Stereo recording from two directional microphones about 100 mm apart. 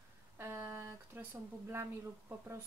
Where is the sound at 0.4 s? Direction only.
25° right (ahead or behind).